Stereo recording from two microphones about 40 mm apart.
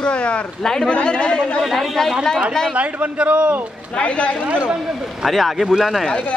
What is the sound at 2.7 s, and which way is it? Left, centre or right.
Speech, right.